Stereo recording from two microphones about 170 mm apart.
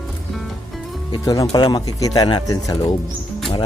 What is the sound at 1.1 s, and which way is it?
Music, 25° left (ahead or behind).